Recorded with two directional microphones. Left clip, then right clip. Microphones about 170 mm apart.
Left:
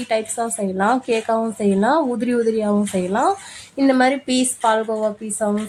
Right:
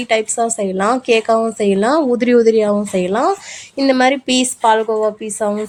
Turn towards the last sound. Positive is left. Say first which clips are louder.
# right 4 dB
turn(degrees=-15)  # may be behind; listen again after turning